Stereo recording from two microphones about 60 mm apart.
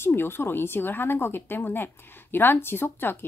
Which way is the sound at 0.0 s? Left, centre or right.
Left.